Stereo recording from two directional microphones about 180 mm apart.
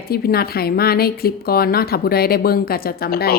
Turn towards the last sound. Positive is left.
turn(degrees=60)  # may be behind; listen again after turning